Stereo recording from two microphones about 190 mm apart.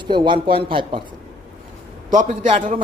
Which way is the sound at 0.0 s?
25° right (ahead or behind).